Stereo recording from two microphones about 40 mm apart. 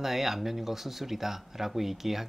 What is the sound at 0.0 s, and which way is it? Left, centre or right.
Speech, centre.